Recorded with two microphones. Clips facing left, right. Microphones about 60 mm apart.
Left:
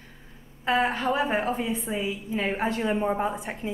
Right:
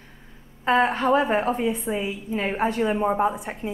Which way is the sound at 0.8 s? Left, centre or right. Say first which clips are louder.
Right 4 dB; right.